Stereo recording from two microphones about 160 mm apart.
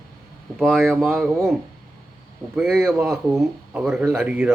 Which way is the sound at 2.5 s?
5° right (ahead or behind).